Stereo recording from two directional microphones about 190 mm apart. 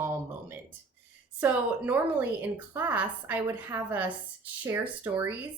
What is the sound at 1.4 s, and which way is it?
A woman's voice, 10° right (ahead or behind).